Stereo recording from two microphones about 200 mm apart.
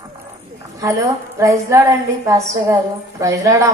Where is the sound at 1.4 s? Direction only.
15° right (ahead or behind).